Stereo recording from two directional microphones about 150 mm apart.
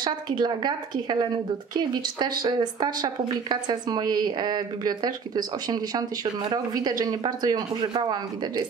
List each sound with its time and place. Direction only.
0.0 s speech: 30° right (ahead or behind)